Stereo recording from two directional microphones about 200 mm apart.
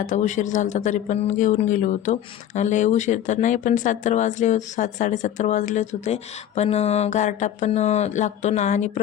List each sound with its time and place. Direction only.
0.0 s speech: 40° left (ahead or behind)